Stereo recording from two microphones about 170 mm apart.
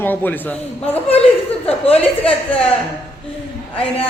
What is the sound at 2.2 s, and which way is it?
Speech, 35° left (ahead or behind).